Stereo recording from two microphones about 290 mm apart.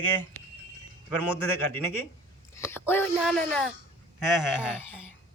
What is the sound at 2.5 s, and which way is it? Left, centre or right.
Speech, centre.